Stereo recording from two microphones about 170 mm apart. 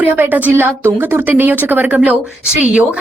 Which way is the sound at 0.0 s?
10° right (ahead or behind).